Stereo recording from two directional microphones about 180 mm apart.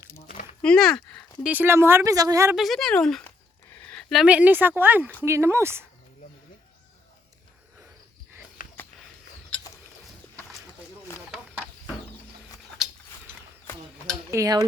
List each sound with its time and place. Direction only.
0.6 s speech: 5° left (ahead or behind)
1.5 s speech: 10° right (ahead or behind)
2.6 s speech: centre (ahead or behind)
8.6 s sniff: 50° left (ahead or behind)
14.3 s dishes: 20° right (ahead or behind)